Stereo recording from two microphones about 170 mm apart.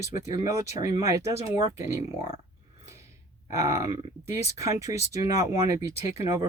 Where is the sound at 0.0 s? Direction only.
20° right (ahead or behind).